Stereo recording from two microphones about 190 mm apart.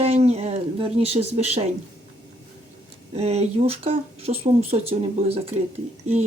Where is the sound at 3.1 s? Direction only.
35° right (ahead or behind).